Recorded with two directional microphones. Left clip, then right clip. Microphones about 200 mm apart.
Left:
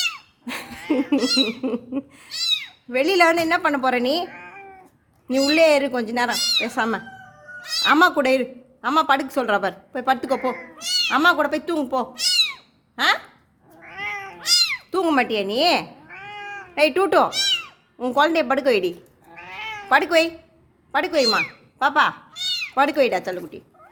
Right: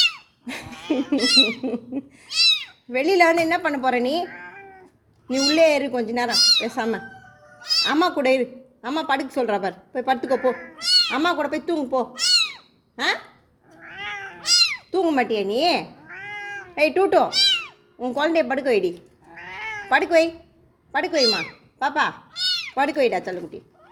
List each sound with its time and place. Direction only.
0.0 s cat: 15° left (ahead or behind)
1.0 s speech: 10° left (ahead or behind)
13.7 s cat: 25° left (ahead or behind)
20.9 s speech: 15° left (ahead or behind)